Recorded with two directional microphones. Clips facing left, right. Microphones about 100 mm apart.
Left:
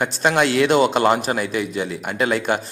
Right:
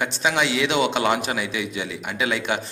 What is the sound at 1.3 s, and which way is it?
Speech, 40° left (ahead or behind).